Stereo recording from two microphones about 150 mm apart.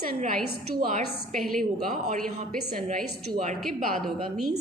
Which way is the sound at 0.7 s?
70° right (ahead or behind).